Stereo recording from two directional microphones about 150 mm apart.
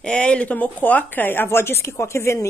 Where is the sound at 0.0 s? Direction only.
5° left (ahead or behind).